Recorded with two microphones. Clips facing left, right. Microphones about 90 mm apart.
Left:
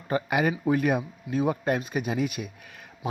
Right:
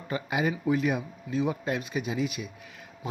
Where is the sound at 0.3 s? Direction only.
60° left (ahead or behind).